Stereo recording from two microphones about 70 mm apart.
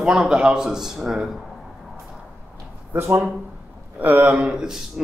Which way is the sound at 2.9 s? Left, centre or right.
Right.